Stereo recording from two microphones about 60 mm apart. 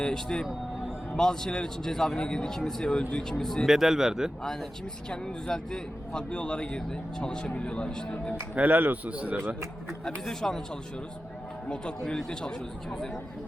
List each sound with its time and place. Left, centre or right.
0.0 s a man's voice: centre
3.7 s speech: centre
5.5 s a man's voice: centre
8.5 s speech: right
10.2 s a man's voice: centre
11.7 s a man's voice: centre